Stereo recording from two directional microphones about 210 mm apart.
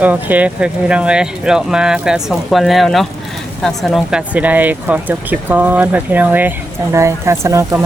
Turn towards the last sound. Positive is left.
turn(degrees=-15)  # may be behind; listen again after turning